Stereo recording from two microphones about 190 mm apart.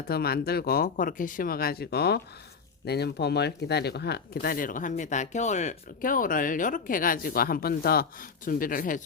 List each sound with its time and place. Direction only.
0.1 s speech: 55° left (ahead or behind)